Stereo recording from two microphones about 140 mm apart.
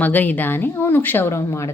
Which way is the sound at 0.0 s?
10° left (ahead or behind).